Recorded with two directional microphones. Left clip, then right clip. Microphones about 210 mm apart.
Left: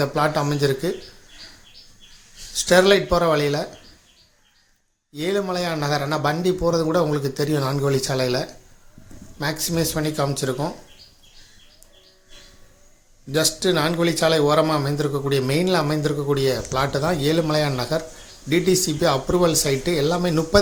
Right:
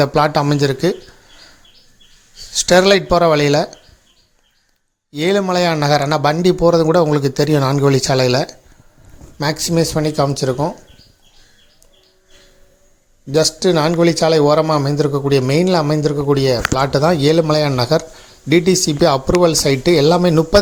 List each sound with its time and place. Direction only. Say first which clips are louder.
0.0 s a man's voice: right 7 dB; 40° right (ahead or behind)
2.5 s a man's voice: right 4 dB; 40° right (ahead or behind)
5.1 s a man's voice: right 8 dB; 40° right (ahead or behind)
13.3 s a man's voice: right 6 dB; 30° right (ahead or behind)